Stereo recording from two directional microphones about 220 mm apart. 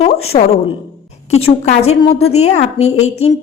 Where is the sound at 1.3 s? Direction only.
25° left (ahead or behind).